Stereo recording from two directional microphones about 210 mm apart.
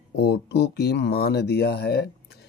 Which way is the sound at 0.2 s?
50° left (ahead or behind).